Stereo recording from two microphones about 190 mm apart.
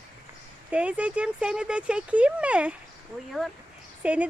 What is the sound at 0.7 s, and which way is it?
Speech, 5° right (ahead or behind).